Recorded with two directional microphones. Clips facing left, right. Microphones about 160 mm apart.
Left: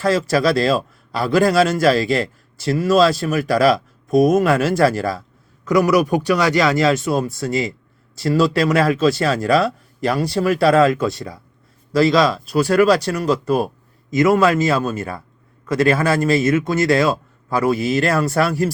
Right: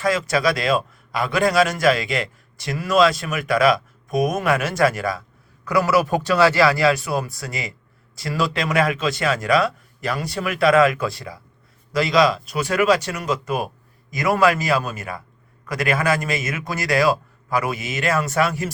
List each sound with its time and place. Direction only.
0.1 s speech: 30° left (ahead or behind)
5.6 s a man's voice: 20° left (ahead or behind); by 18.7 s 35° left (ahead or behind)